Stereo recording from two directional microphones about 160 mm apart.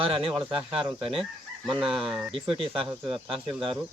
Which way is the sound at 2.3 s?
35° right (ahead or behind).